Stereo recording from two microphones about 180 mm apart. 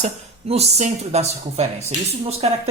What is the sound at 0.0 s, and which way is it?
Speech, 35° right (ahead or behind).